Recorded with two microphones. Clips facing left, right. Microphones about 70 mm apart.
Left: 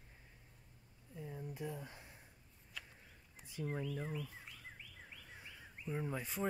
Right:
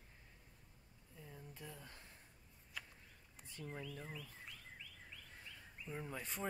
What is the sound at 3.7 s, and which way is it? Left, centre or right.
Speech, left.